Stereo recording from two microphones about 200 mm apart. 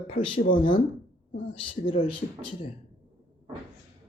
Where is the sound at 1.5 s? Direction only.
25° left (ahead or behind).